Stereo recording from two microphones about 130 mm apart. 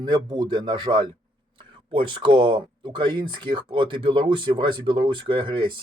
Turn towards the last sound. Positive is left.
turn(degrees=-40)  # may be behind; listen again after turning